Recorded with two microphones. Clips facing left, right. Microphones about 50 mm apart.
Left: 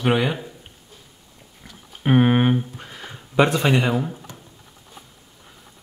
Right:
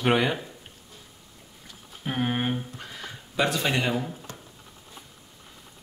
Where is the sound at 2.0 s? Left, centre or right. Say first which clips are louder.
Left 10 dB; left.